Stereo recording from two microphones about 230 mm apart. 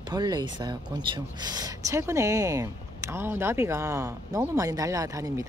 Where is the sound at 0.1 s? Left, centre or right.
Centre.